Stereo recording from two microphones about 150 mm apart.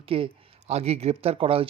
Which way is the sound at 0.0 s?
40° right (ahead or behind).